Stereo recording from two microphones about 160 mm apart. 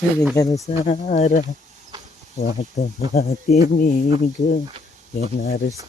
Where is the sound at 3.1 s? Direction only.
45° left (ahead or behind).